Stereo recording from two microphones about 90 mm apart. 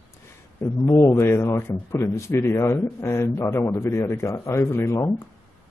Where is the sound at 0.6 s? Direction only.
30° left (ahead or behind).